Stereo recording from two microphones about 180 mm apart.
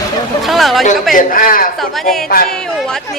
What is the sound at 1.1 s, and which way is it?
Speech, 50° left (ahead or behind).